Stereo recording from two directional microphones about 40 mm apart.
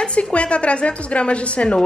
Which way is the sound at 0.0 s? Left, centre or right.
Left.